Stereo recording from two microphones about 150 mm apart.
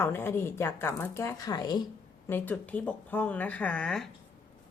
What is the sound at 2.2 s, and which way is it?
A woman's voice, 15° left (ahead or behind).